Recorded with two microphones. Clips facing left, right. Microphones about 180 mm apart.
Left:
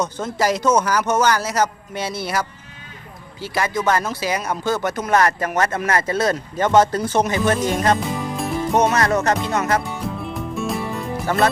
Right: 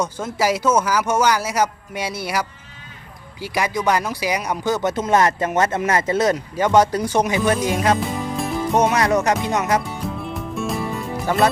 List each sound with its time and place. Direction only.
0.0 s speech: 10° right (ahead or behind)
8.9 s speech: 15° right (ahead or behind)
10.1 s music: centre (ahead or behind)
11.3 s speech: 15° right (ahead or behind)